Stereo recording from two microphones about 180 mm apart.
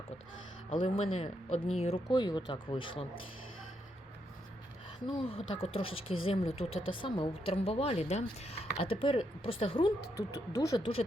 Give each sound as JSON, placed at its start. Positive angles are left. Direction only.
{"t": 0.7, "sound": "speech", "side_deg": 30}
{"t": 5.0, "sound": "speech", "side_deg": 30}
{"t": 10.2, "sound": "speech", "side_deg": 15}